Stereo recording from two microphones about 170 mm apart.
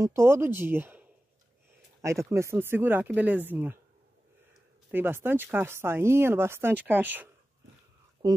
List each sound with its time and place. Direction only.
0.0 s speech: 15° right (ahead or behind)
4.9 s speech: 10° right (ahead or behind)
8.2 s a sound: 25° right (ahead or behind)